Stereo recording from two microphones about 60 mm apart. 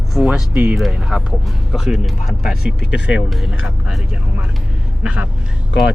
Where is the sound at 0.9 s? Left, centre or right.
Centre.